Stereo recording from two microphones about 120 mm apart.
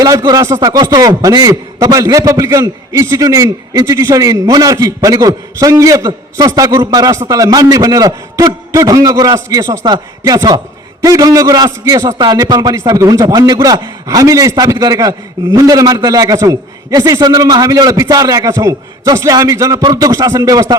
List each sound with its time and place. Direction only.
0.0 s a man's voice: 30° right (ahead or behind)